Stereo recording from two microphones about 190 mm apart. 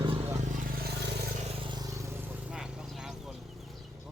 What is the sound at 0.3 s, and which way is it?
Vehicle, 50° right (ahead or behind).